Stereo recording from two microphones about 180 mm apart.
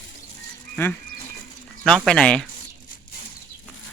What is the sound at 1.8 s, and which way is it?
Speech, centre (ahead or behind).